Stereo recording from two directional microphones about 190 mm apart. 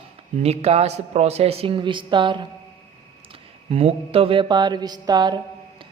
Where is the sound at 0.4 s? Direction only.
35° right (ahead or behind).